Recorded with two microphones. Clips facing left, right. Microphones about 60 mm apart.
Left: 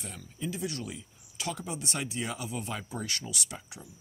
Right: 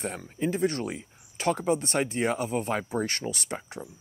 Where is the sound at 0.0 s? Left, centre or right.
Right.